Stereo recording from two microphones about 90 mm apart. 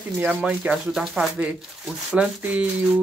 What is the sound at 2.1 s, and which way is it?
Speech, 15° right (ahead or behind).